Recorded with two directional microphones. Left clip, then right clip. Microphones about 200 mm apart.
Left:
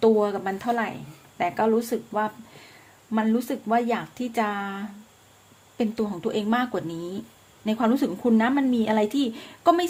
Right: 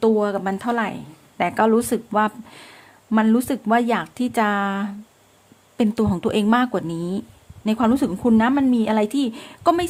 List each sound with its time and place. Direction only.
0.0 s speech: 25° right (ahead or behind)